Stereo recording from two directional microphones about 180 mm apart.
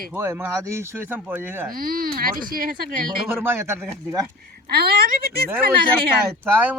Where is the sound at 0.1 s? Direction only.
15° right (ahead or behind).